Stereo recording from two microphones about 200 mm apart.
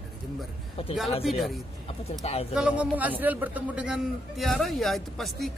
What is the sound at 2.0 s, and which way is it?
Speech, 30° left (ahead or behind).